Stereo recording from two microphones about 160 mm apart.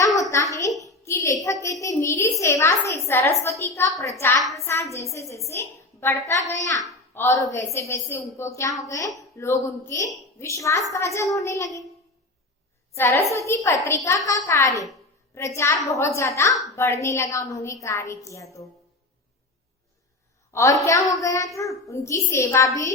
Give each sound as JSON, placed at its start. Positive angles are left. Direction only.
{"t": 0.2, "sound": "a sound", "side_deg": 20}
{"t": 1.6, "sound": "a woman's voice", "side_deg": 20}
{"t": 13.0, "sound": "a woman's voice", "side_deg": 15}
{"t": 20.5, "sound": "a woman's voice", "side_deg": 20}